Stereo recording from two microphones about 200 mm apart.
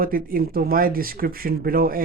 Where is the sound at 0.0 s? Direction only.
45° right (ahead or behind).